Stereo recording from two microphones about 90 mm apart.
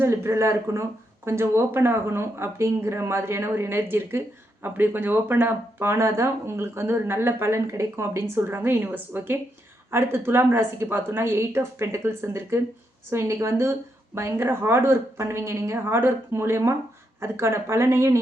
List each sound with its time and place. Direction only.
0.0 s speech: 30° right (ahead or behind)